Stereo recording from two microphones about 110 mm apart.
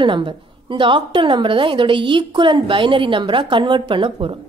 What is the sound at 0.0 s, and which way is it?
A woman's voice, 50° right (ahead or behind).